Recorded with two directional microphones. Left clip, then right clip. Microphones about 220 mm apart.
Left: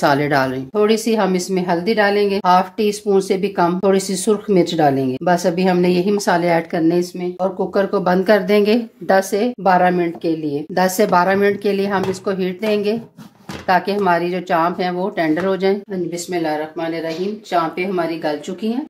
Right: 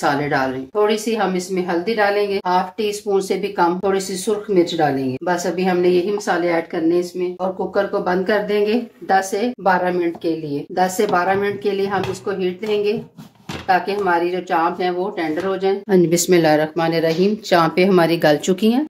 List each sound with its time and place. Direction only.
0.0 s a woman's voice: 50° left (ahead or behind); by 10.3 s 35° left (ahead or behind)
10.7 s a woman's voice: 50° left (ahead or behind)
15.9 s speech: 50° right (ahead or behind)